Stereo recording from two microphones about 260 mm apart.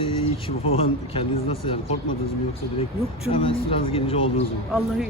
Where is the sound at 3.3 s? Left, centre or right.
Left.